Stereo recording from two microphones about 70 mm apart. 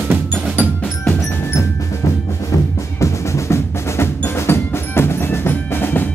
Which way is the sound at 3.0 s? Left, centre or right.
Left.